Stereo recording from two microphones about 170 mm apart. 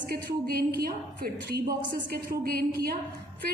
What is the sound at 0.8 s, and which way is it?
A woman's voice, 60° right (ahead or behind).